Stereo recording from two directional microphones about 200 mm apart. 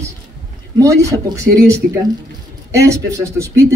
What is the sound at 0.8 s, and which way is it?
Speech, 15° right (ahead or behind).